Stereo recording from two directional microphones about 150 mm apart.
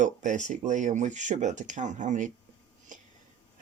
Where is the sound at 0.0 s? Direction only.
55° right (ahead or behind).